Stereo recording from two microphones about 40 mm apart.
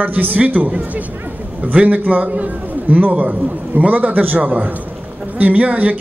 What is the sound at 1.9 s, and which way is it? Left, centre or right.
A man's voice, right.